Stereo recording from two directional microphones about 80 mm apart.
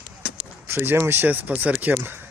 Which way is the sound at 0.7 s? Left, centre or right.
Right.